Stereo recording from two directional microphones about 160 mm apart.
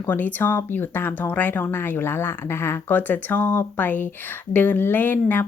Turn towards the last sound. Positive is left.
turn(degrees=10)  # may be behind; listen again after turning